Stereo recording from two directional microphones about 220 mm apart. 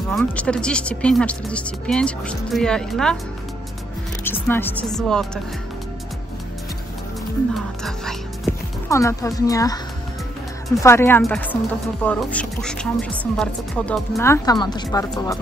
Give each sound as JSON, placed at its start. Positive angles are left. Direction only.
{"t": 0.1, "sound": "speech", "side_deg": 5}
{"t": 4.2, "sound": "speech", "side_deg": 10}
{"t": 7.5, "sound": "speech", "side_deg": 0}
{"t": 8.8, "sound": "speech", "side_deg": 15}
{"t": 10.8, "sound": "speech", "side_deg": 10}